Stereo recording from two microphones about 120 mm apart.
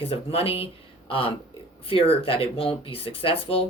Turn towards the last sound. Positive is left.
turn(degrees=50)  # may be behind; listen again after turning